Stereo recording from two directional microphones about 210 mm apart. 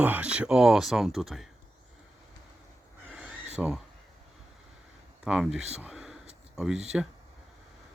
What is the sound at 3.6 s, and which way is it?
Speech, 5° right (ahead or behind).